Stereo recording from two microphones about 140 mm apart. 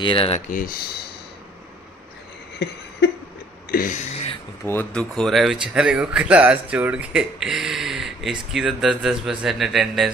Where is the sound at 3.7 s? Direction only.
90° left.